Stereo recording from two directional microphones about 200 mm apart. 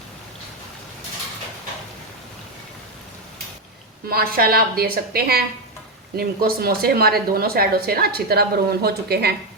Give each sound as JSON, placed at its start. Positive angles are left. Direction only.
{"t": 4.1, "sound": "speech", "side_deg": -50}